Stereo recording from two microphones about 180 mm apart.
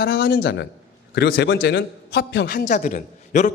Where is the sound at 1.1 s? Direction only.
65° left (ahead or behind).